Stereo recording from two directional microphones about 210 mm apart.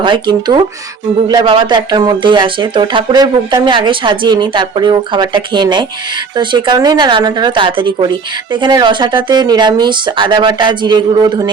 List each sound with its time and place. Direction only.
0.0 s speech: 20° right (ahead or behind)